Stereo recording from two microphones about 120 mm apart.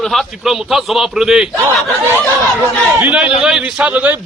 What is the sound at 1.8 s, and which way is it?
Battle cry, 20° right (ahead or behind).